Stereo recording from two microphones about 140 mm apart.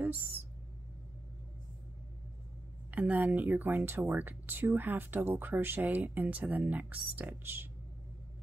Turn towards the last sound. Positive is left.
turn(degrees=-15)  # may be behind; listen again after turning